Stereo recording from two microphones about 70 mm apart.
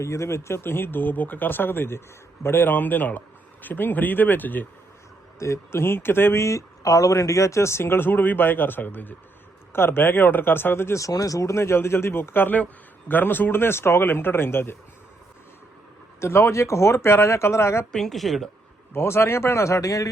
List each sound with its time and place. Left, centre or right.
0.0 s speech: left
5.4 s speech: left
11.0 s speech: left
16.2 s speech: left
17.9 s speech: centre
18.9 s speech: left